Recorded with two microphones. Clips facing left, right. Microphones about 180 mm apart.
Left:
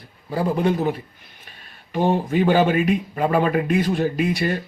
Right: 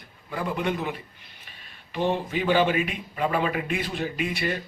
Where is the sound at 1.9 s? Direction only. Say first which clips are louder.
Left 6 dB; 45° left (ahead or behind).